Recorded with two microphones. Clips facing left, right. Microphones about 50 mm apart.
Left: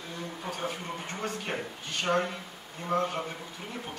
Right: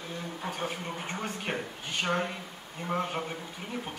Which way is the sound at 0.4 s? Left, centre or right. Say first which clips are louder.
Even; centre.